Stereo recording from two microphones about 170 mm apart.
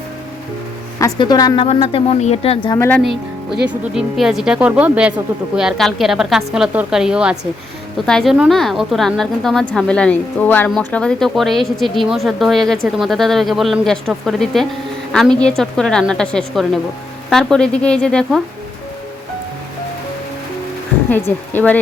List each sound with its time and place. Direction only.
0.9 s speech: 20° left (ahead or behind)
1.6 s speech: 35° left (ahead or behind)
2.7 s a woman's voice: 15° left (ahead or behind)
3.0 s a woman's voice: centre (ahead or behind)
21.1 s a woman's voice: 10° left (ahead or behind)